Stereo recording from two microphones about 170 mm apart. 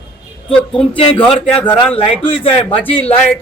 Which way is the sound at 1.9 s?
35° left (ahead or behind).